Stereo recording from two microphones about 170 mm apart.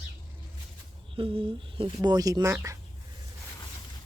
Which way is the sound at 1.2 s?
30° right (ahead or behind).